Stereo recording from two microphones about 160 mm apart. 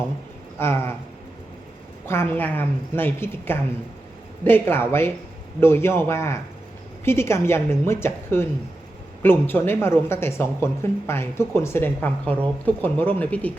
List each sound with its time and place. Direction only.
0.6 s speech: 15° left (ahead or behind)
2.0 s speech: 15° left (ahead or behind)